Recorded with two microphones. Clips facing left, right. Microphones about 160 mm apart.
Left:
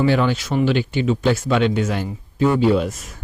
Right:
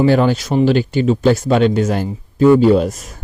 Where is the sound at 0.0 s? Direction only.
40° right (ahead or behind).